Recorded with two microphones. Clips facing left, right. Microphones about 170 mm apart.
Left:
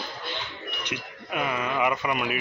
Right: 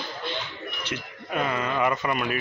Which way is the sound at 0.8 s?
10° left (ahead or behind).